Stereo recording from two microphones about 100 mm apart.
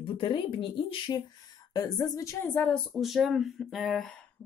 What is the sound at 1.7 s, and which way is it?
Speech, 35° left (ahead or behind).